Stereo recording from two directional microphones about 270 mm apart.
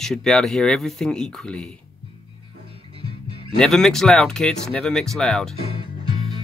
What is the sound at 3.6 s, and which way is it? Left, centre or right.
Speech, centre.